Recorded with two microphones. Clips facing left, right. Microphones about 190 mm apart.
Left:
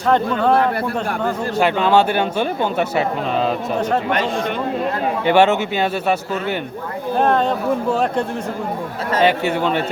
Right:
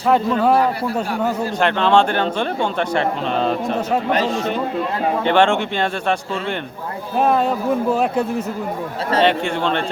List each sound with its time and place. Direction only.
0.1 s a man's voice: 5° right (ahead or behind)
1.5 s a man's voice: 5° left (ahead or behind)
4.1 s speech: 30° right (ahead or behind)
5.2 s a man's voice: 10° left (ahead or behind)
7.2 s a man's voice: 5° right (ahead or behind)
9.2 s a man's voice: 5° left (ahead or behind)